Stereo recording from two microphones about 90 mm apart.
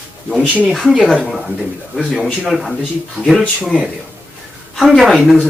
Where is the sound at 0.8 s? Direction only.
5° right (ahead or behind).